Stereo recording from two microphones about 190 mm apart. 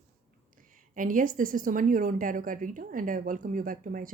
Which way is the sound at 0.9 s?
45° right (ahead or behind).